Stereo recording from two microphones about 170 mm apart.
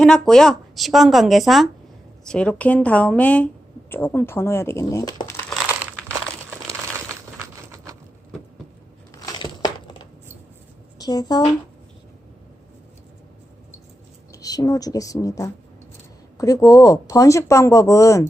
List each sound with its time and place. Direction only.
0.0 s a woman's voice: 5° left (ahead or behind); by 5.4 s 20° left (ahead or behind)
5.8 s crumpling: 10° right (ahead or behind)
7.3 s a sound: 15° right (ahead or behind)
9.2 s a sound: 25° left (ahead or behind)
10.9 s speech: 20° left (ahead or behind)
14.3 s speech: 20° left (ahead or behind)